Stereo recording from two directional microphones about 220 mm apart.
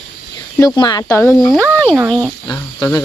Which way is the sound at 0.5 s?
15° left (ahead or behind).